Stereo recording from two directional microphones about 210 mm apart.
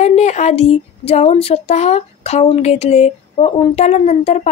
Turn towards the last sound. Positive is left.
turn(degrees=30)  # may be behind; listen again after turning